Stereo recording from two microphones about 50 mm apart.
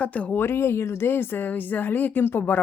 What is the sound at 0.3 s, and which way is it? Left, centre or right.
Speech, left.